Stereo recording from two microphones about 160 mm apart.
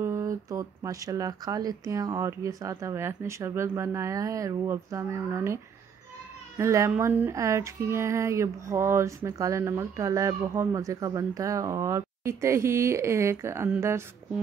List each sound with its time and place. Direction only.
0.0 s speech: 20° right (ahead or behind)
6.6 s speech: 20° right (ahead or behind)